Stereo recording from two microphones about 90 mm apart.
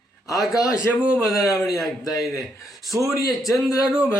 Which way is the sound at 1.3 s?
40° left (ahead or behind).